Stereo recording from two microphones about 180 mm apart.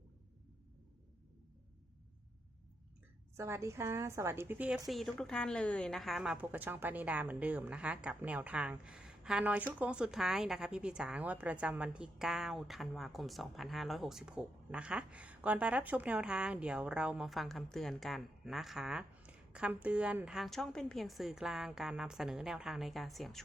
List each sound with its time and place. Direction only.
3.3 s a woman's voice: 15° right (ahead or behind)
4.9 s a woman's voice: centre (ahead or behind)